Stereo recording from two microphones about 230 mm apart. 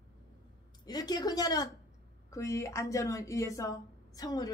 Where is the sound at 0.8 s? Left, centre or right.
Centre.